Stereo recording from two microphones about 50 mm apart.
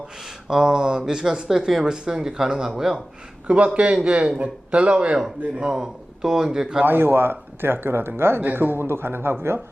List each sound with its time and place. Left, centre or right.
0.4 s speech: centre
3.4 s a man's voice: right
6.8 s speech: right